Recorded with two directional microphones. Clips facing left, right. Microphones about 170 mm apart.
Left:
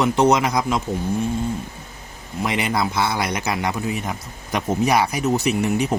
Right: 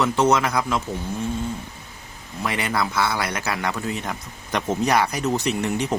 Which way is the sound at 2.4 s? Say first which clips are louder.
Left 2 dB; 15° left (ahead or behind).